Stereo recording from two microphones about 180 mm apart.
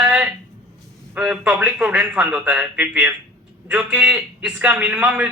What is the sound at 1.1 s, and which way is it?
A man's voice, 5° right (ahead or behind).